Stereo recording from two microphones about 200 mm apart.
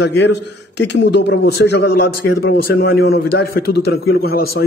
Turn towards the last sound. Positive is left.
turn(degrees=50)  # may be behind; listen again after turning